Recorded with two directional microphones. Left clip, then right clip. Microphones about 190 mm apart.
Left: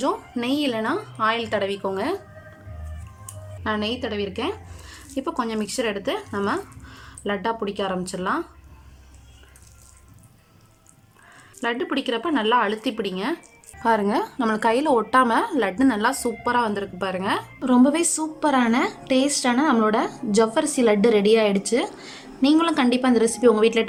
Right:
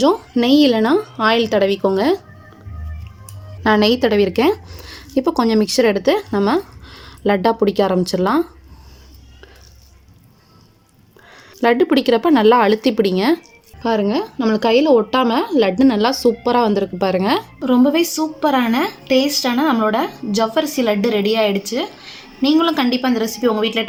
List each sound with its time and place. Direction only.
0.0 s speech: 25° right (ahead or behind)
3.6 s speech: 35° right (ahead or behind)
11.3 s speech: 30° right (ahead or behind)
13.8 s a woman's voice: 5° right (ahead or behind); by 17.4 s 20° right (ahead or behind)
17.6 s a woman's voice: centre (ahead or behind)